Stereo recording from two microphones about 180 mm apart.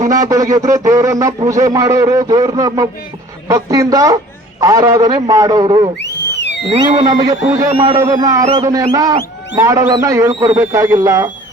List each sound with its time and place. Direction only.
0.1 s speech: 20° right (ahead or behind)
6.0 s a sound: 75° left (ahead or behind)
6.7 s speech: 25° right (ahead or behind)